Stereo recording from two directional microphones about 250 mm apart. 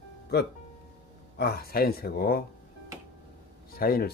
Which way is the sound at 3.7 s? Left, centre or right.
Left.